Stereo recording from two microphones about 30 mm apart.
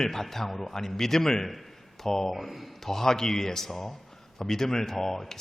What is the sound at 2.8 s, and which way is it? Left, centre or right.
Speech, centre.